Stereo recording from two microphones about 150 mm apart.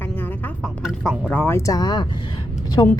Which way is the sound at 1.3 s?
15° left (ahead or behind).